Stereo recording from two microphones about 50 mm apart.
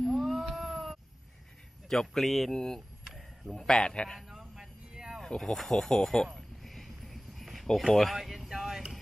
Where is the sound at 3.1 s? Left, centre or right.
Centre.